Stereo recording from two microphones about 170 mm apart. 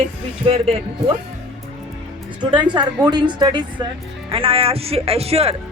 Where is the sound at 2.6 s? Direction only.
25° right (ahead or behind).